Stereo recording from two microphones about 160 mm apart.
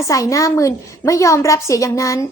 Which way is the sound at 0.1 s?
20° left (ahead or behind).